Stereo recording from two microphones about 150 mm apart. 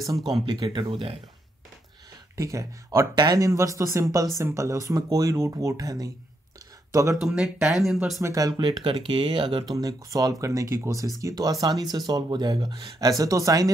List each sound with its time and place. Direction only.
0.5 s speech: 35° right (ahead or behind)
2.3 s speech: 20° right (ahead or behind)
7.2 s speech: centre (ahead or behind)
8.2 s speech: 25° right (ahead or behind)
9.8 s speech: 25° right (ahead or behind)